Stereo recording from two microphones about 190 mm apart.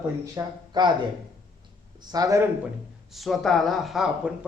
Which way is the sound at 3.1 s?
Centre (ahead or behind).